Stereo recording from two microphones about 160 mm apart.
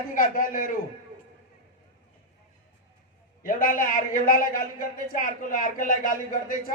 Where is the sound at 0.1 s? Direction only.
60° left (ahead or behind).